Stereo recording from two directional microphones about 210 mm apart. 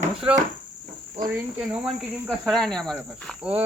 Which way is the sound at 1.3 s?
5° right (ahead or behind).